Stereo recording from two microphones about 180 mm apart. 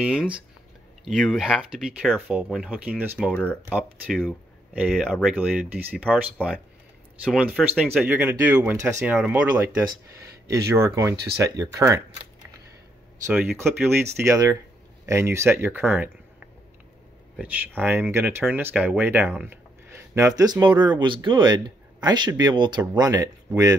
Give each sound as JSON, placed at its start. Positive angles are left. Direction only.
{"t": 0.0, "sound": "speech", "side_deg": -5}
{"t": 3.3, "sound": "speech", "side_deg": 10}
{"t": 3.7, "sound": "speech", "side_deg": -10}
{"t": 13.3, "sound": "speech", "side_deg": -5}